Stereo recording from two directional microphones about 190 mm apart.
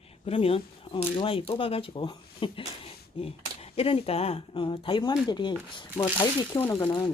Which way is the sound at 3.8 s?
30° left (ahead or behind).